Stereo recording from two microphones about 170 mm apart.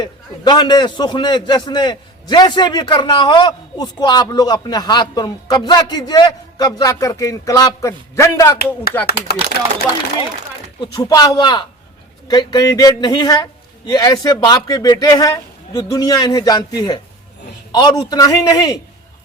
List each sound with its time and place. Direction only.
0.0 s a man's voice: 25° left (ahead or behind)
9.2 s speech: 70° left (ahead or behind)
10.8 s a man's voice: 25° left (ahead or behind)